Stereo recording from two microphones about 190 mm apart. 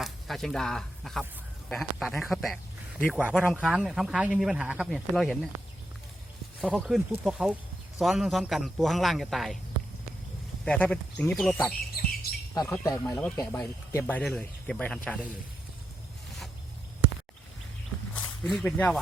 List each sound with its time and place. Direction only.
0.0 s speech: centre (ahead or behind)
6.6 s speech: centre (ahead or behind)
10.7 s speech: 5° left (ahead or behind)
12.0 s squawk: 50° left (ahead or behind)
12.5 s speech: 15° left (ahead or behind)
18.1 s speech: 5° left (ahead or behind)